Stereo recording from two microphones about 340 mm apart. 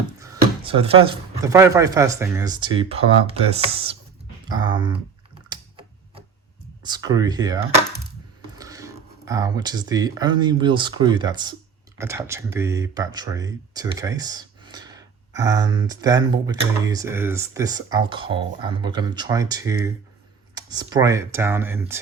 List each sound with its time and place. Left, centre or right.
0.2 s speech: centre
5.5 s tick-tock: centre
6.8 s speech: centre